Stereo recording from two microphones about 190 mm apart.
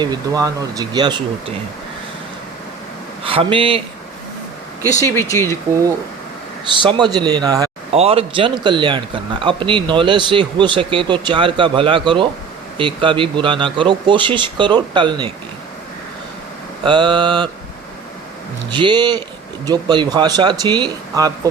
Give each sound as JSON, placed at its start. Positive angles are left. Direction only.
{"t": 0.0, "sound": "speech", "side_deg": -20}
{"t": 3.2, "sound": "a man's voice", "side_deg": -30}
{"t": 5.1, "sound": "speech", "side_deg": 15}
{"t": 6.7, "sound": "speech", "side_deg": -25}
{"t": 7.9, "sound": "speech", "side_deg": -30}
{"t": 16.8, "sound": "speech", "side_deg": -25}
{"t": 18.7, "sound": "speech", "side_deg": -25}